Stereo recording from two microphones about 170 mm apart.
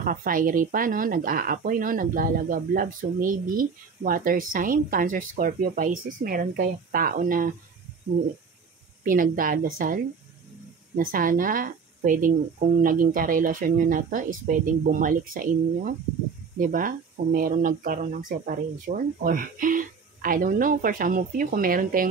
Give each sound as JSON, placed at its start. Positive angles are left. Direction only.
{"t": 0.0, "sound": "speech", "side_deg": -55}
{"t": 9.0, "sound": "speech", "side_deg": -55}